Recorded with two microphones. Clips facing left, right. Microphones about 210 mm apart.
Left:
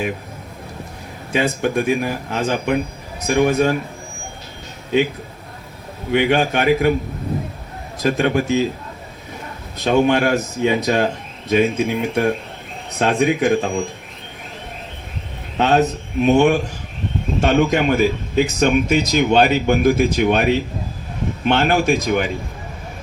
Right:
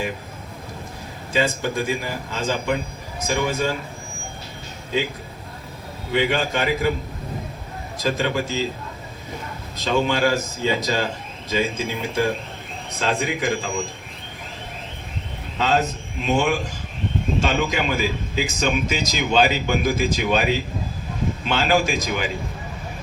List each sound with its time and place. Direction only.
1.3 s speech: 60° left (ahead or behind)
6.1 s speech: 60° left (ahead or behind)
8.0 s speech: 65° left (ahead or behind)
9.7 s speech: 65° left (ahead or behind)
15.5 s a sound: 65° left (ahead or behind)
16.2 s speech: 60° left (ahead or behind)